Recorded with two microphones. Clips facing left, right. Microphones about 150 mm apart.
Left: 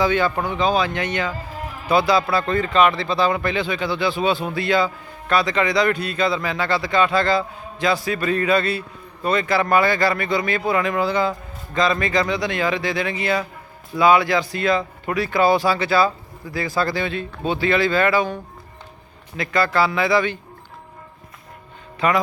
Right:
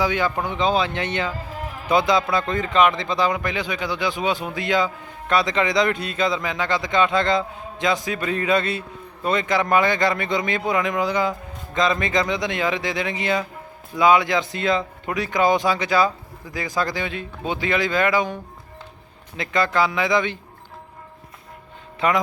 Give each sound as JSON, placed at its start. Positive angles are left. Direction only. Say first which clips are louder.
{"t": 0.0, "sound": "speech", "louder": "left 3 dB", "side_deg": -15}
{"t": 19.4, "sound": "speech", "louder": "left 1 dB", "side_deg": -20}
{"t": 22.0, "sound": "speech", "louder": "left 1 dB", "side_deg": -25}